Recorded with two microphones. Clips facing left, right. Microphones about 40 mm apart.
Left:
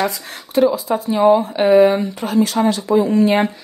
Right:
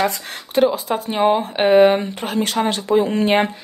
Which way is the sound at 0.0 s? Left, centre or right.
Right.